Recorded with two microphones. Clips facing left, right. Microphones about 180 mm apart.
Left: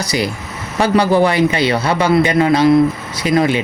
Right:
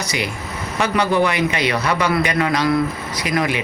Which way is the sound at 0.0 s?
35° left (ahead or behind).